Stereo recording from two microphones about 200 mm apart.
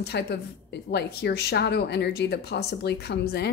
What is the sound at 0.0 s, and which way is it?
A woman's voice, 55° left (ahead or behind).